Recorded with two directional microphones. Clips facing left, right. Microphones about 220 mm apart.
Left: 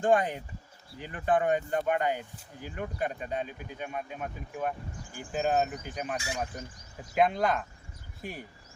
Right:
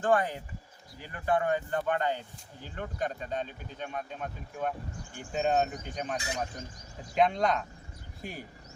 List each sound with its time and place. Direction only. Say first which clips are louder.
0.0 s speech: left 2 dB; 15° left (ahead or behind)
6.1 s speech: even; 20° right (ahead or behind)
7.2 s speech: even; 5° left (ahead or behind)